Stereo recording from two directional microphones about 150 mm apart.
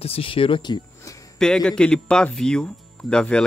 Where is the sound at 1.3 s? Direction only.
5° left (ahead or behind).